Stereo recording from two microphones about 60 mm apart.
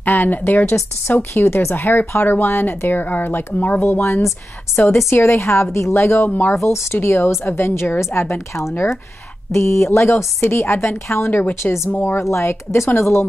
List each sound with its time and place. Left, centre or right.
0.0 s speech: left
3.8 s a woman's voice: left
4.7 s speech: left
5.2 s a woman's voice: left
11.2 s a woman's voice: left